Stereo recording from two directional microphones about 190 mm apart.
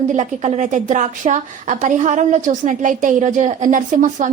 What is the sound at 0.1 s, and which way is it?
A woman's voice, 35° right (ahead or behind).